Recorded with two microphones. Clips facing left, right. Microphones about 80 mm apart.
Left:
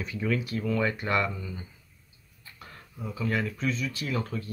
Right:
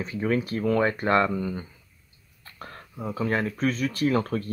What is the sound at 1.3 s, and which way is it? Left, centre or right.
Speech, right.